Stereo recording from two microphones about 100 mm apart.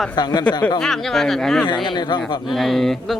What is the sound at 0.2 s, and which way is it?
Speech, 45° left (ahead or behind).